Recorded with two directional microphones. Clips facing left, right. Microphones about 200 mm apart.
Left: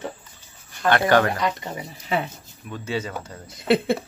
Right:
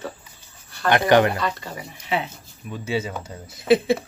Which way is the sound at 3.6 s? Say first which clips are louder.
Right 2 dB; 60° left (ahead or behind).